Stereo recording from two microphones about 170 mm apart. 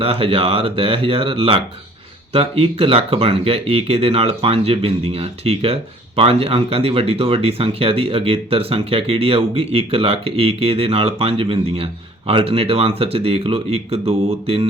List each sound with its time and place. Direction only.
0.0 s speech: 35° right (ahead or behind)